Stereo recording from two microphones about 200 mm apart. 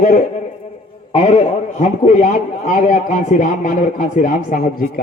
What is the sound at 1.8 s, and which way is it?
A man's voice, 35° left (ahead or behind).